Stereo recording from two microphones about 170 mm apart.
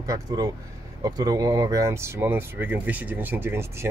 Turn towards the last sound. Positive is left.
turn(degrees=-15)  # may be behind; listen again after turning